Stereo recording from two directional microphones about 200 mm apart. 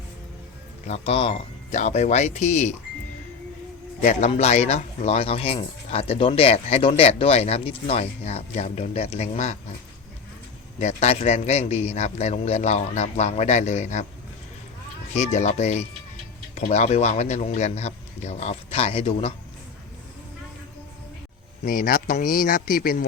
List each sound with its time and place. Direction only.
0.9 s speech: 30° left (ahead or behind)
4.0 s speech: 35° left (ahead or behind)
10.8 s speech: 35° left (ahead or behind)
15.1 s speech: 35° left (ahead or behind)
21.6 s speech: 45° left (ahead or behind)